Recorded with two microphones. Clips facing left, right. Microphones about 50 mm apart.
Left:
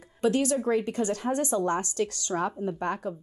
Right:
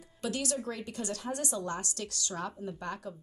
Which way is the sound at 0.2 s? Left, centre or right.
Left.